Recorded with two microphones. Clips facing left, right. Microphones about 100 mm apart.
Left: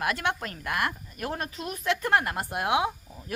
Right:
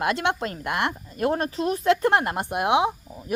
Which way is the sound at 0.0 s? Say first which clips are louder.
Right 5 dB; 25° right (ahead or behind).